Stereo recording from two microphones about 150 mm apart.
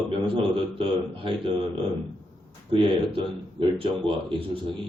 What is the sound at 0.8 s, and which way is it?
Speech, 35° right (ahead or behind).